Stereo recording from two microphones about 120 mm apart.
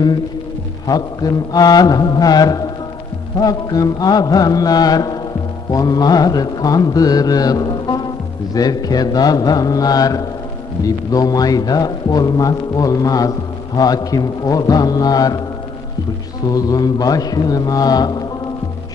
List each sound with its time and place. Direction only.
0.8 s a man's voice: 30° left (ahead or behind)
16.4 s a man's voice: 30° left (ahead or behind)